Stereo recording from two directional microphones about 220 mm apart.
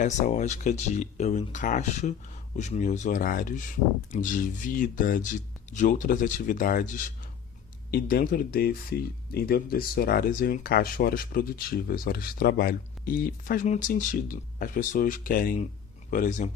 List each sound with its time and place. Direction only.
0.0 s speech: 35° left (ahead or behind)